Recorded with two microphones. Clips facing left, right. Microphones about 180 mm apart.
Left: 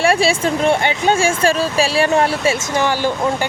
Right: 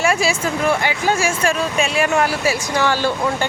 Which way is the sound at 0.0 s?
30° left (ahead or behind).